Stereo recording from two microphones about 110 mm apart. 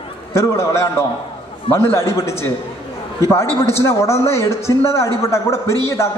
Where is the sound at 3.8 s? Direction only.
25° left (ahead or behind).